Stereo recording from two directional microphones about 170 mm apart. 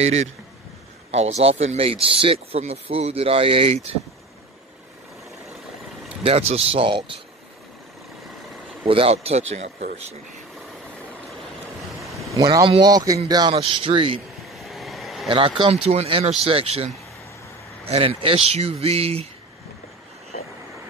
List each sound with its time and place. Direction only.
0.0 s speech: 40° right (ahead or behind)
6.2 s speech: 35° right (ahead or behind)
8.8 s speech: 35° right (ahead or behind)
12.0 s vehicle: centre (ahead or behind)
12.4 s speech: 25° right (ahead or behind)
14.6 s vehicle: centre (ahead or behind)
15.2 s speech: 30° right (ahead or behind)